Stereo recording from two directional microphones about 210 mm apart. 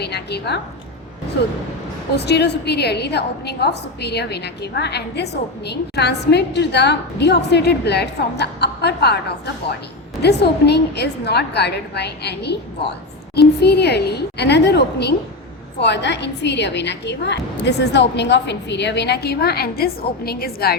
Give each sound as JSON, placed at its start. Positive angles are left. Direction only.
{"t": 0.0, "sound": "a woman's voice", "side_deg": 50}
{"t": 2.1, "sound": "a woman's voice", "side_deg": 55}
{"t": 10.2, "sound": "a woman's voice", "side_deg": 55}